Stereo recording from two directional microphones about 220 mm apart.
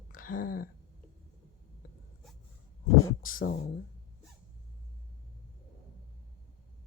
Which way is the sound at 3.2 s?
40° left (ahead or behind).